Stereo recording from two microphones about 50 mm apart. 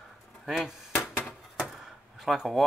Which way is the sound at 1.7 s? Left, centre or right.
Centre.